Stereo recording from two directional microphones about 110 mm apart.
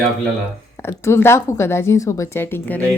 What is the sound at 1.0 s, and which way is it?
A woman's voice, 25° left (ahead or behind).